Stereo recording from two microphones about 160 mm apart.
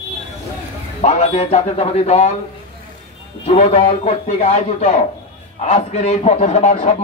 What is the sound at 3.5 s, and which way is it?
A man's voice, 40° left (ahead or behind).